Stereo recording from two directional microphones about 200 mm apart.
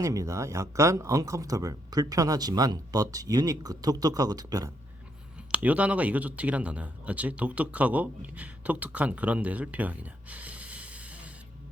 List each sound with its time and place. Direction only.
0.0 s speech: 15° right (ahead or behind)
5.5 s speech: 5° right (ahead or behind)